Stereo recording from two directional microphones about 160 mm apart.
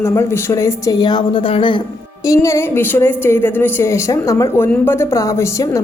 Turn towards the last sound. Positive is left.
turn(degrees=20)  # may be behind; listen again after turning